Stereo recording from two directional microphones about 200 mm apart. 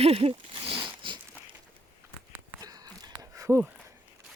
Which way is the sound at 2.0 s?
15° right (ahead or behind).